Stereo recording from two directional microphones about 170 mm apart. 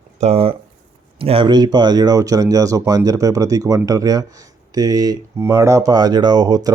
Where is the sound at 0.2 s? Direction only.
35° right (ahead or behind).